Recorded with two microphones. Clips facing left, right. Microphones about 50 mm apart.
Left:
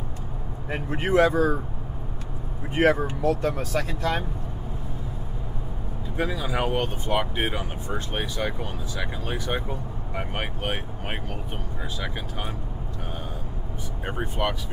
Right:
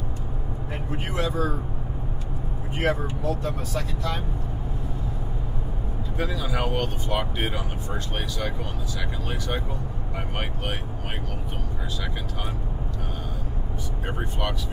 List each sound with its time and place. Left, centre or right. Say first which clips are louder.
0.7 s speech: left 7 dB; left
2.7 s speech: left 5 dB; left
6.1 s speech: left 2 dB; left
14.0 s speech: left 3 dB; left